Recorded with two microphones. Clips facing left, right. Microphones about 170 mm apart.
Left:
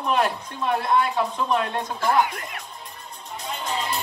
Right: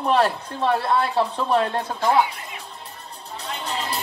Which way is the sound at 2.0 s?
55° left (ahead or behind).